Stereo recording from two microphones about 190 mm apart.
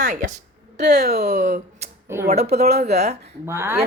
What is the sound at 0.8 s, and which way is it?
Speech, 60° right (ahead or behind).